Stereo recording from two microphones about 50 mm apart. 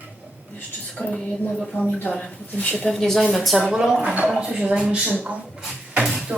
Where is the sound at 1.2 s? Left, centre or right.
Left.